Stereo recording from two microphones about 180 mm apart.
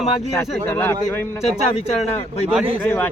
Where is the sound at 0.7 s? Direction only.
10° left (ahead or behind).